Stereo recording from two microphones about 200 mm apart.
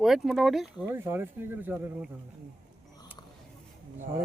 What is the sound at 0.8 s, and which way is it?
Speech, 10° right (ahead or behind).